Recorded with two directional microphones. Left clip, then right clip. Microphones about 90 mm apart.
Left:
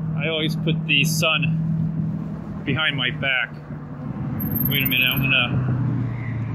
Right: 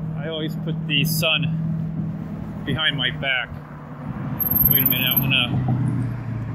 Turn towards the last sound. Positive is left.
turn(degrees=15)  # may be behind; listen again after turning